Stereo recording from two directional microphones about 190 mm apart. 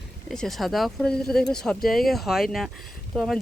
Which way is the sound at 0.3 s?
Centre (ahead or behind).